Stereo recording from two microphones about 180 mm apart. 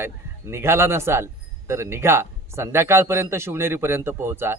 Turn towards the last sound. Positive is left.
turn(degrees=-15)  # may be behind; listen again after turning